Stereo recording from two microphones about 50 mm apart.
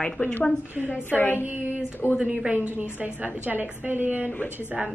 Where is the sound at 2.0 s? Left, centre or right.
Centre.